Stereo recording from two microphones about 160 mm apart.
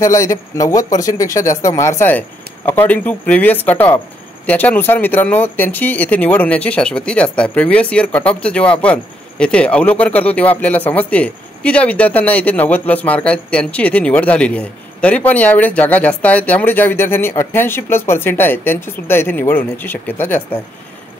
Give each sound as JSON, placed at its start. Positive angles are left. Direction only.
{"t": 0.0, "sound": "speech", "side_deg": 20}